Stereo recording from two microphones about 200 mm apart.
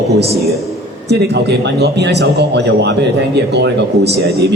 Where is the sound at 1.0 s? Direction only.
55° right (ahead or behind).